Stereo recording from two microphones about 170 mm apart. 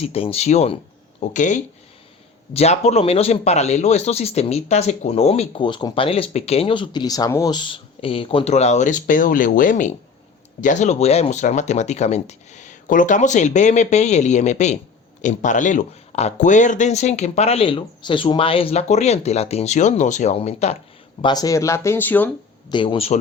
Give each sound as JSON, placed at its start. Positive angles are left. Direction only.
{"t": 0.0, "sound": "speech", "side_deg": 35}
{"t": 21.2, "sound": "speech", "side_deg": 25}
{"t": 22.7, "sound": "speech", "side_deg": 30}